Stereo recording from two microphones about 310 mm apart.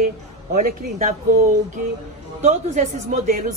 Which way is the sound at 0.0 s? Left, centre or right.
Right.